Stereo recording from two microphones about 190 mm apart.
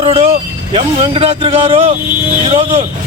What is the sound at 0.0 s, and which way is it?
Speech, 35° right (ahead or behind).